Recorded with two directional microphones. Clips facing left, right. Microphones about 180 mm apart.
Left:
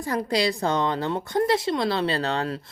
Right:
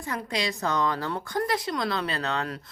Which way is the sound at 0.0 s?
35° left (ahead or behind).